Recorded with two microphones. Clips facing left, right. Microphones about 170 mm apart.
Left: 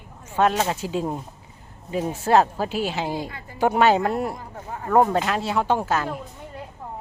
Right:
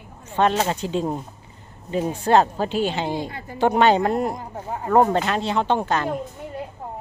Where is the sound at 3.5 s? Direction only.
5° left (ahead or behind).